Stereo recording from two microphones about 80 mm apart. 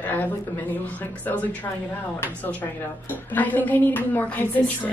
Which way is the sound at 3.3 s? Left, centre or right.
Left.